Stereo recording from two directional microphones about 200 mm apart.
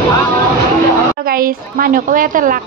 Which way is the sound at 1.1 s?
45° right (ahead or behind).